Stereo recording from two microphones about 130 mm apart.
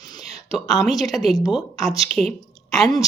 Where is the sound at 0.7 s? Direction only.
Centre (ahead or behind).